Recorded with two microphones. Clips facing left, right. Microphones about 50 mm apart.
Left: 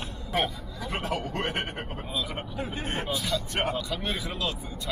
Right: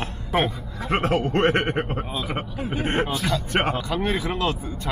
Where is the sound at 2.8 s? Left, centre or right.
Right.